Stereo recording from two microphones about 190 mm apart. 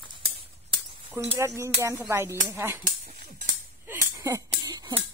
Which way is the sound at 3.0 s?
40° right (ahead or behind).